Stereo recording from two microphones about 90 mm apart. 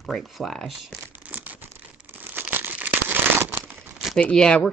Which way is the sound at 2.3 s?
20° right (ahead or behind).